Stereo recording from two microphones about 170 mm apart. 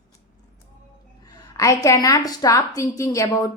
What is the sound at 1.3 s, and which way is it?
A woman's voice, 20° left (ahead or behind).